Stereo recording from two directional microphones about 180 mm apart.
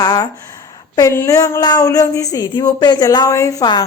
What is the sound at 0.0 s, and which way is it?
Speech, 20° left (ahead or behind).